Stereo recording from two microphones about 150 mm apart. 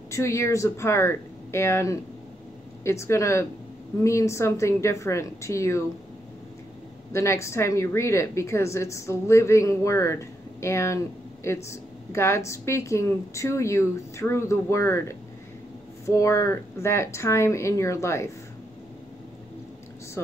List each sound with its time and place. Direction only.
0.1 s a woman's voice: 20° left (ahead or behind)
7.1 s a woman's voice: 20° left (ahead or behind)